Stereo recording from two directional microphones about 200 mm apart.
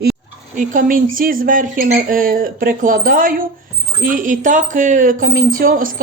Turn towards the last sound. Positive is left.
turn(degrees=-45)  # may be behind; listen again after turning